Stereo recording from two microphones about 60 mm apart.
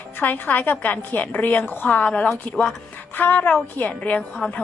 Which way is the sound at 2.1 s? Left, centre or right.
Centre.